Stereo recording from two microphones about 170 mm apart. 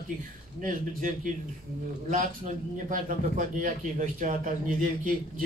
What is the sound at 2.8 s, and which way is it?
A man's voice, 50° right (ahead or behind).